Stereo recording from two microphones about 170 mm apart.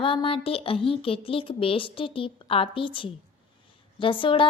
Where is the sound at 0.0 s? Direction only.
30° left (ahead or behind).